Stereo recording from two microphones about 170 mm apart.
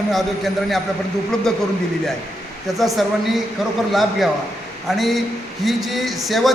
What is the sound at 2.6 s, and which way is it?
A man's voice, centre (ahead or behind).